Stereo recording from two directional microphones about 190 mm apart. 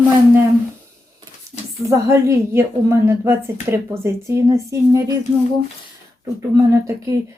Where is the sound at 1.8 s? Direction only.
15° right (ahead or behind).